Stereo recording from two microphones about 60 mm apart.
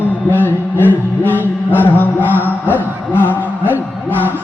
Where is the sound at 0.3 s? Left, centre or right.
Left.